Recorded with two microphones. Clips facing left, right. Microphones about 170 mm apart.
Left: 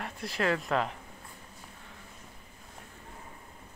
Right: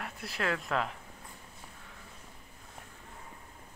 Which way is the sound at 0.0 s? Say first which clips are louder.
Left 4 dB; centre (ahead or behind).